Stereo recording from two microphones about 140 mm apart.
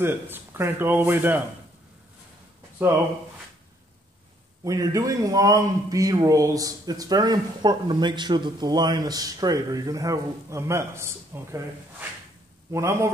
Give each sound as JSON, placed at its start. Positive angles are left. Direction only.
{"t": 0.0, "sound": "speech", "side_deg": -15}
{"t": 4.6, "sound": "speech", "side_deg": -25}